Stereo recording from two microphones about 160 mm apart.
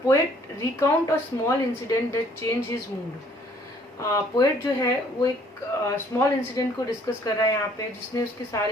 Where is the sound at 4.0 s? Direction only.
20° left (ahead or behind).